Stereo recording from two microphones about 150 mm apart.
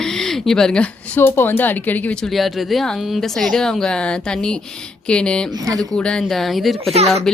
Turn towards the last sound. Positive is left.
turn(degrees=-45)  # may be behind; listen again after turning